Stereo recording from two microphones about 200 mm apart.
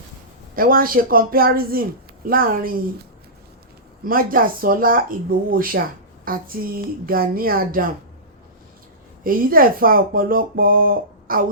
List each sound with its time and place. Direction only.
0.5 s speech: 45° right (ahead or behind)
9.2 s speech: 45° right (ahead or behind)